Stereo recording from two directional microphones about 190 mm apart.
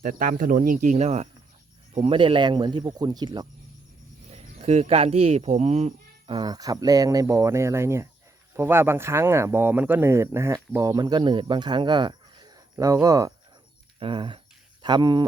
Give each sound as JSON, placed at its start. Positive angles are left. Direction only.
{"t": 0.0, "sound": "speech", "side_deg": -45}
{"t": 4.3, "sound": "speech", "side_deg": -35}
{"t": 14.0, "sound": "a sound", "side_deg": -25}